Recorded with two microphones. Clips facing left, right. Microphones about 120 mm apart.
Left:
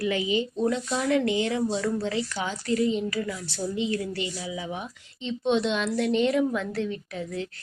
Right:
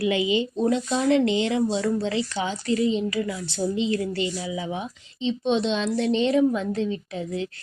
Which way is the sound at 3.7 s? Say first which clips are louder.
Right 2 dB; 25° right (ahead or behind).